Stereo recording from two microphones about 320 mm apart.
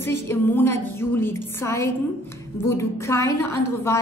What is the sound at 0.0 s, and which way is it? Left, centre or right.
A woman's voice, centre.